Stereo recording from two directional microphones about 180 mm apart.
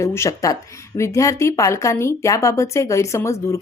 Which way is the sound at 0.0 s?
15° left (ahead or behind).